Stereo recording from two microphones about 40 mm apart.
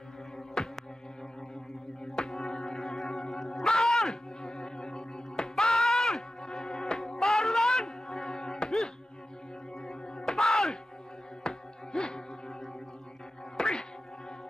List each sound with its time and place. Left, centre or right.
0.6 s music: centre
2.2 s music: centre
13.6 s music: centre